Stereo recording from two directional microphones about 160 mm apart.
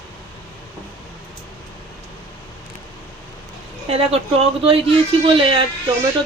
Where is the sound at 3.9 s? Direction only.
40° right (ahead or behind).